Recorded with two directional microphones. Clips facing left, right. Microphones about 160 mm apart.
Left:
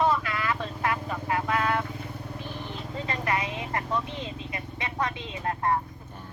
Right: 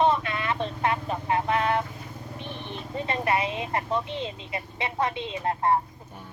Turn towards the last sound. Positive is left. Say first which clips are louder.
# right 3 dB
turn(degrees=-25)  # may be behind; listen again after turning